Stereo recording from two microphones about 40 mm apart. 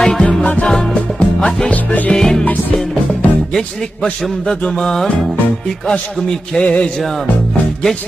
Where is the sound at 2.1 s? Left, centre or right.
Centre.